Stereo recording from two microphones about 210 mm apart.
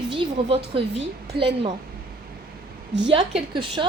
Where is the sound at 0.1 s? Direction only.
25° right (ahead or behind).